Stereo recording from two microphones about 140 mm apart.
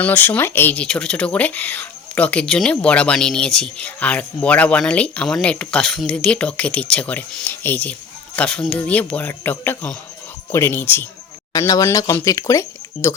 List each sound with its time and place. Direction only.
0.0 s speech: 15° left (ahead or behind)